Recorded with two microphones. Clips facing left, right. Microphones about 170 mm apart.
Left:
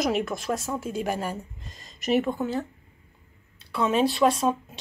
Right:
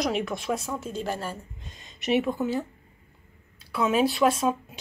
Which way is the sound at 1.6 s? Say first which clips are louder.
Even; centre (ahead or behind).